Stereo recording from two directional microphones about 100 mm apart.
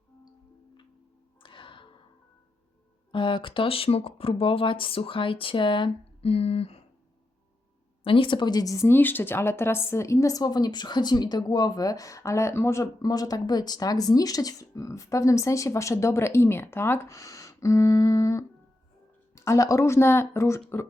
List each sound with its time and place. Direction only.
1.4 s music: 55° left (ahead or behind)
3.1 s speech: 55° left (ahead or behind)
6.3 s speech: 85° left
8.0 s speech: 60° left (ahead or behind); by 20.8 s 25° left (ahead or behind)